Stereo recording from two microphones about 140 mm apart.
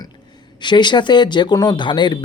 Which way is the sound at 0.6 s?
35° left (ahead or behind).